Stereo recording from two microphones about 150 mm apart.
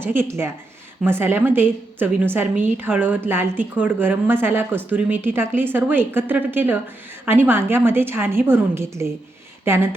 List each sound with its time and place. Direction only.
0.0 s a woman's voice: 15° right (ahead or behind)